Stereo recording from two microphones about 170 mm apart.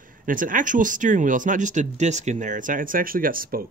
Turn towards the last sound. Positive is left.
turn(degrees=-55)  # may be behind; listen again after turning